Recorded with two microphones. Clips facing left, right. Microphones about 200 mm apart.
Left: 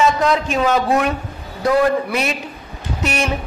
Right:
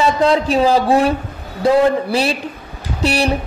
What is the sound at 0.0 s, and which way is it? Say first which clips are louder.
A woman's voice: right 2 dB; 30° right (ahead or behind).